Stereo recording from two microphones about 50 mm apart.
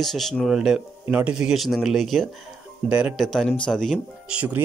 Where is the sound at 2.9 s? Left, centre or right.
Right.